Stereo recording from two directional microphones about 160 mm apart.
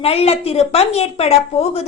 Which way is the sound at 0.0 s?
40° left (ahead or behind).